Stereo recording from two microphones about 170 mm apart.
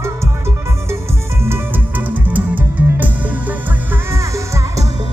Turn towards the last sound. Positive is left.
turn(degrees=-20)  # may be behind; listen again after turning